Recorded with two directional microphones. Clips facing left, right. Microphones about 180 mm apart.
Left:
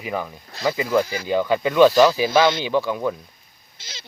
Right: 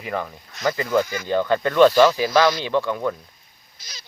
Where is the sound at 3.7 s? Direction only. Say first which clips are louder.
Left 4 dB; 25° left (ahead or behind).